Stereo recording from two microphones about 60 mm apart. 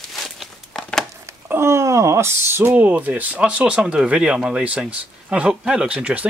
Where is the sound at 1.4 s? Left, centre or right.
Right.